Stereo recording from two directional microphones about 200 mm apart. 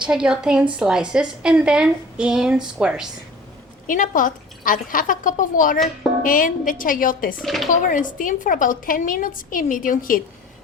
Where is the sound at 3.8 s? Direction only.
40° left (ahead or behind).